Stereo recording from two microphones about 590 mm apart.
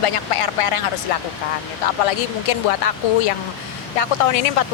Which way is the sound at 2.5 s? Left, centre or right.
Left.